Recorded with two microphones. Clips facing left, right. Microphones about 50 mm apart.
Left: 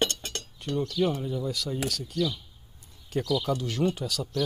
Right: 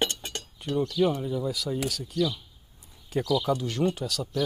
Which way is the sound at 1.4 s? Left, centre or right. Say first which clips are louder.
Right 1 dB; centre.